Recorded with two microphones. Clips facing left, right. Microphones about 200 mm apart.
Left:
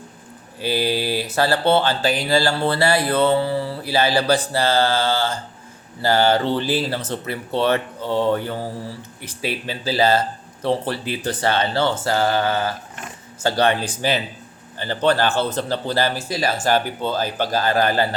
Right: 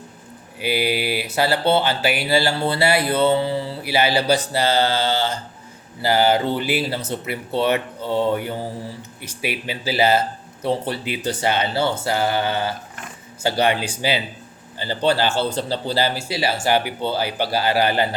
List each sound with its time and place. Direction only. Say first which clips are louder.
0.6 s speech: even; 15° right (ahead or behind)